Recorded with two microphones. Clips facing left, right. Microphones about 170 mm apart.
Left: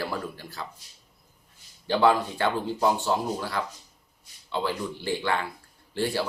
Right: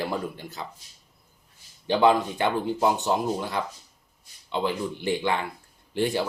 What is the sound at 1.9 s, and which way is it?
A man's voice, 20° right (ahead or behind).